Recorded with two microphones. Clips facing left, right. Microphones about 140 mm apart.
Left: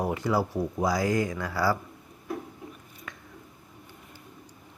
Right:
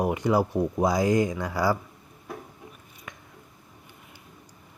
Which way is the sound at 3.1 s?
15° right (ahead or behind).